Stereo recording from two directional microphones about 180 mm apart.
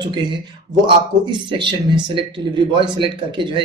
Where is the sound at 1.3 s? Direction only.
25° right (ahead or behind).